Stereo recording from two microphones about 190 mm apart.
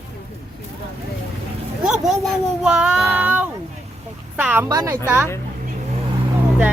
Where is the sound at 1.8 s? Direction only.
Centre (ahead or behind).